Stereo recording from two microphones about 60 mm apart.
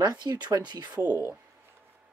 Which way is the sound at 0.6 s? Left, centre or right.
Right.